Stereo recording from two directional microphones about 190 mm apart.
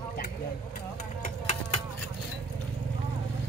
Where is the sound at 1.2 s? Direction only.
35° left (ahead or behind).